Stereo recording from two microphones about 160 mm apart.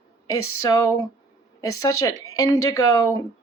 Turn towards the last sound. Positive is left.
turn(degrees=25)  # may be behind; listen again after turning